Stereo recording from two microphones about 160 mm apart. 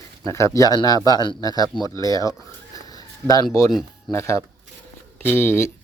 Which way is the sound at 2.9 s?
25° left (ahead or behind).